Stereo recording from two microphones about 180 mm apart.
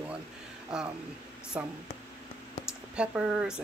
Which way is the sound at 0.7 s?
5° right (ahead or behind).